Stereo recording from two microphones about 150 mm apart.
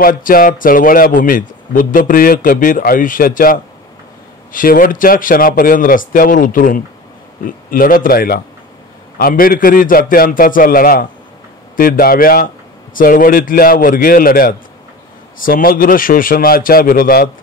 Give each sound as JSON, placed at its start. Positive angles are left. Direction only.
{"t": 0.0, "sound": "speech", "side_deg": 70}